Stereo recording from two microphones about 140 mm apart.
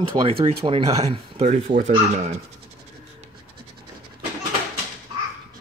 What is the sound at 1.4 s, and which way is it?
Speech, 60° right (ahead or behind).